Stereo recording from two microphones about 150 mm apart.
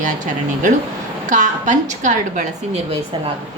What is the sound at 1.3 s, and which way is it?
A woman's voice, 55° right (ahead or behind).